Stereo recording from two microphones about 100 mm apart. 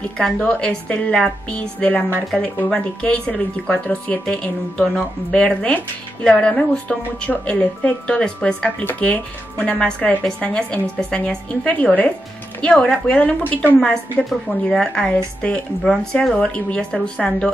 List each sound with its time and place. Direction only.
0.2 s speech: 10° left (ahead or behind)